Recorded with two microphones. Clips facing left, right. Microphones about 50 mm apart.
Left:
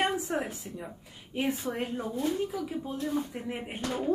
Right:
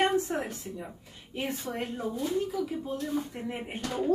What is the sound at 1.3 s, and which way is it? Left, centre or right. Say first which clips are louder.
Speech: left 3 dB; centre.